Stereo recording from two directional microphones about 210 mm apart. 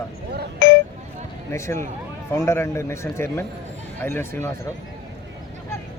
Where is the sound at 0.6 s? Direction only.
60° left (ahead or behind).